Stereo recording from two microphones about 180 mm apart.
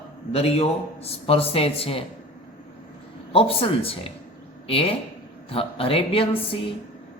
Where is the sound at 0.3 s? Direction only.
35° left (ahead or behind).